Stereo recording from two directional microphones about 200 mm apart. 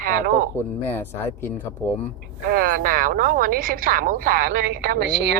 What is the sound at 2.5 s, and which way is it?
Speech, 45° right (ahead or behind).